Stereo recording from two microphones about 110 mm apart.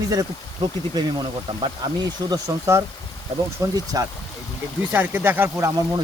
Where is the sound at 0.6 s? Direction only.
45° right (ahead or behind).